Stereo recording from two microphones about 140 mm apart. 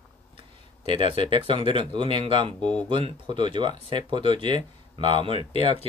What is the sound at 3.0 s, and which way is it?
Speech, 35° right (ahead or behind).